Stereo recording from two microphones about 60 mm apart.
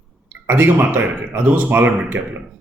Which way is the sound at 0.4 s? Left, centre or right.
Right.